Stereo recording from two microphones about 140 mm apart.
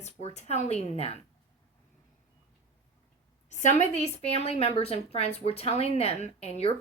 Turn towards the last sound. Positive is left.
turn(degrees=50)  # may be behind; listen again after turning